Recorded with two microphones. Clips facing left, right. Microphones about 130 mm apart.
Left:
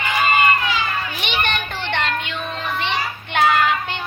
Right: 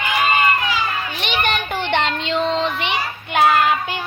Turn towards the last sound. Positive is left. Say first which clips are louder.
# right 2 dB
turn(degrees=-10)  # may be behind; listen again after turning